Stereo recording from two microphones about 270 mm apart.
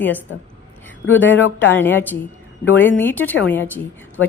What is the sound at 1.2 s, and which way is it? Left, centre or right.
Speech, left.